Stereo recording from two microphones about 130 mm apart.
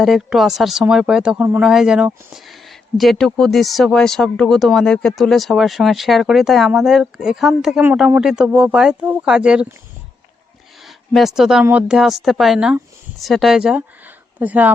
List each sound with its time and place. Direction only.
0.0 s speech: centre (ahead or behind)
10.8 s speech: centre (ahead or behind)